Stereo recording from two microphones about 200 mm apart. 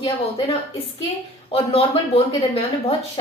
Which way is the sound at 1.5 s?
30° left (ahead or behind).